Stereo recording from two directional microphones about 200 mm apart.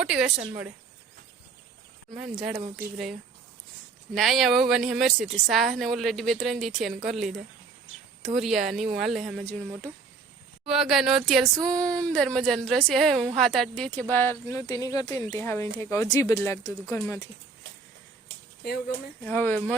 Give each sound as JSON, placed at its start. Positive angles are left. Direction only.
{"t": 0.0, "sound": "speech", "side_deg": -5}
{"t": 2.1, "sound": "speech", "side_deg": 0}
{"t": 4.1, "sound": "speech", "side_deg": 0}
{"t": 10.7, "sound": "speech", "side_deg": 0}
{"t": 19.2, "sound": "speech", "side_deg": 10}